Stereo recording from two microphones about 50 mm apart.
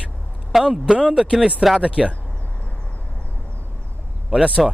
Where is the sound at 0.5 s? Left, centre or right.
Centre.